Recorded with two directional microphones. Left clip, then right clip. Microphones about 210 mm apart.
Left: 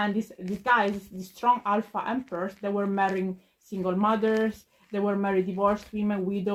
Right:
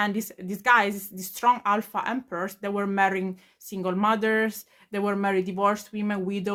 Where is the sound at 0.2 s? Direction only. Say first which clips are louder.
Even; 15° right (ahead or behind).